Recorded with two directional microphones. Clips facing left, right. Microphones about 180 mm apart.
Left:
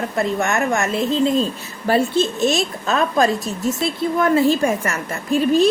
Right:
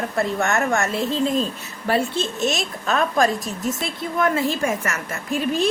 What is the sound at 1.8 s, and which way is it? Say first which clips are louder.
A woman's voice: left 5 dB; 35° left (ahead or behind).